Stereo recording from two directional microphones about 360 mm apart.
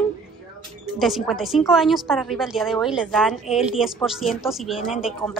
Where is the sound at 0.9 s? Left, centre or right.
Centre.